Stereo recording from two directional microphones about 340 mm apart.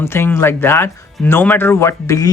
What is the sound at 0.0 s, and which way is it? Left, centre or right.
Speech, centre.